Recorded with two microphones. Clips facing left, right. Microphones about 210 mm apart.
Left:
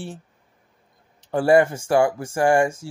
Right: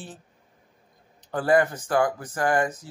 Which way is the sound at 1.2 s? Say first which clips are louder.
Left 5 dB; 25° left (ahead or behind).